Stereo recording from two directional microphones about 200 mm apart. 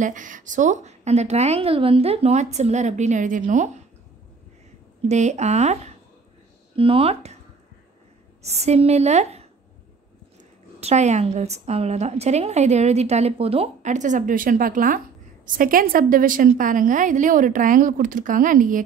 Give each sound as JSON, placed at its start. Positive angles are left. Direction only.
{"t": 0.0, "sound": "a woman's voice", "side_deg": -40}
{"t": 5.0, "sound": "a woman's voice", "side_deg": -35}
{"t": 6.8, "sound": "speech", "side_deg": -30}
{"t": 8.4, "sound": "a woman's voice", "side_deg": -35}
{"t": 10.8, "sound": "a woman's voice", "side_deg": -35}